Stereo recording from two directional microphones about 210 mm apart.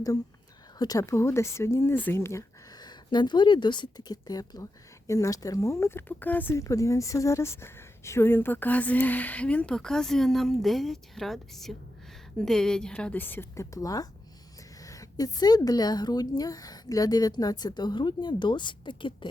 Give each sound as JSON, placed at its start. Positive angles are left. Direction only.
{"t": 0.8, "sound": "speech", "side_deg": 15}